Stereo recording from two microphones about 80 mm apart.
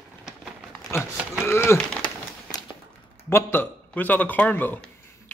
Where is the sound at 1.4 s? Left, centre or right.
Left.